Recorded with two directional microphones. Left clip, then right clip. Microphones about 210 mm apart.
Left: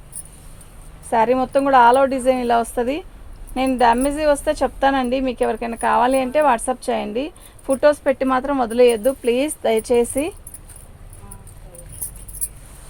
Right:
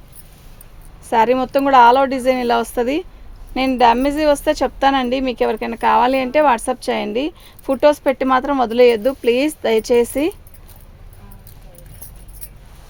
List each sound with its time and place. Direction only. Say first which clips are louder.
1.1 s speech: right 2 dB; 50° right (ahead or behind)